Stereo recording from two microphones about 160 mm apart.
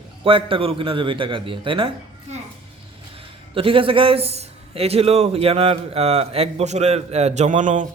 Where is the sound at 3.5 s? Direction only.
35° right (ahead or behind); by 7.8 s 50° right (ahead or behind).